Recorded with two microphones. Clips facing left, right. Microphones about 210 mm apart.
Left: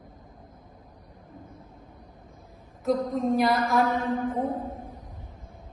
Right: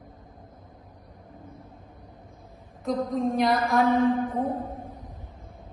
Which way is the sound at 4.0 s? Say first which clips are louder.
Right 6 dB; 30° right (ahead or behind).